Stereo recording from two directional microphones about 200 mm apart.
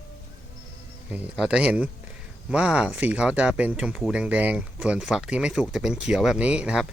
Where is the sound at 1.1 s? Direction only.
5° right (ahead or behind).